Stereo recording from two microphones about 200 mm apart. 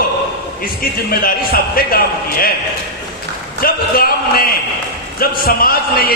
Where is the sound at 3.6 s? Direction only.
45° left (ahead or behind).